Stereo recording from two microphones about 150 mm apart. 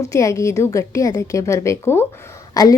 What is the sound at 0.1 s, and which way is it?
A woman's voice, 20° left (ahead or behind).